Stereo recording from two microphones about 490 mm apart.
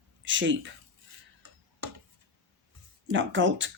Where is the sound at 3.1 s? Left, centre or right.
Right.